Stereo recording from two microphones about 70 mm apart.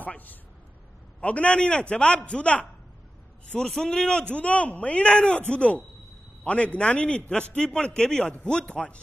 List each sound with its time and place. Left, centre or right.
0.0 s a man's voice: left
3.5 s a man's voice: centre